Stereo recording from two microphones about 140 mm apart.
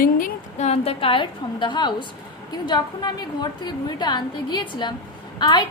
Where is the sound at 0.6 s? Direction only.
50° left (ahead or behind).